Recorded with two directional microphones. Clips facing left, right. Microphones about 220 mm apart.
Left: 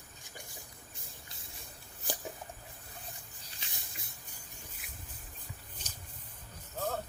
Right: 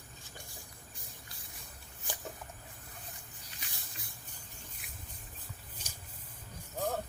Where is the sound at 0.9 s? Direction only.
25° left (ahead or behind).